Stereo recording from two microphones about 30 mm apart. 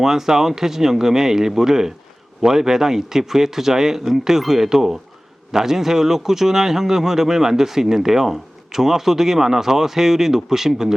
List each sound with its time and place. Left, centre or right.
0.0 s a man's voice: centre